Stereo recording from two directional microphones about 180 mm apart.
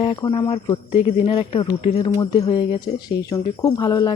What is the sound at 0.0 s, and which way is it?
Speech, 30° left (ahead or behind).